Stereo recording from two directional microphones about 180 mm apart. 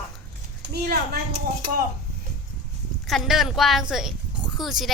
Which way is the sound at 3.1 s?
Centre (ahead or behind).